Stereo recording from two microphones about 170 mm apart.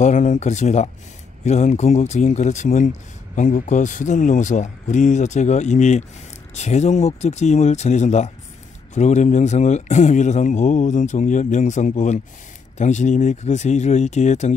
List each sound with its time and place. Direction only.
0.0 s a man's voice: 45° left (ahead or behind)